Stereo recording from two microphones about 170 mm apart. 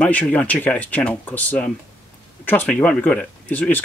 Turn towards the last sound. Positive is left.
turn(degrees=10)  # may be behind; listen again after turning